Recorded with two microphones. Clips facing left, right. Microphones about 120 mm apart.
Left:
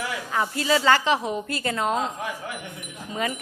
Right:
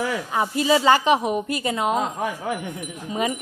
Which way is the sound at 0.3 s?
20° right (ahead or behind).